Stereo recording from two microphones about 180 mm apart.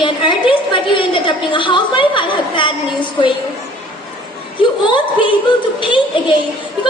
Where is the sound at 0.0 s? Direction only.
30° left (ahead or behind).